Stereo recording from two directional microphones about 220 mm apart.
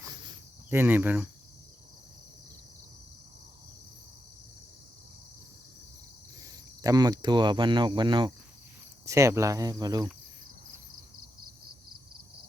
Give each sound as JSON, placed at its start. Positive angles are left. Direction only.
{"t": 0.0, "sound": "cricket", "side_deg": -15}
{"t": 6.4, "sound": "speech", "side_deg": -15}